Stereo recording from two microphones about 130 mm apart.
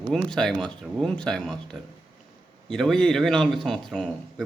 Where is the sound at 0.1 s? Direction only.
5° left (ahead or behind).